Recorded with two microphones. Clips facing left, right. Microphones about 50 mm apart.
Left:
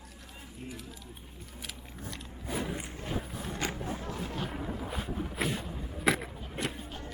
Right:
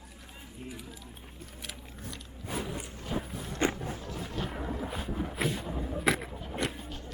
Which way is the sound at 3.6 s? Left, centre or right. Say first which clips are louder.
Right 7 dB; right.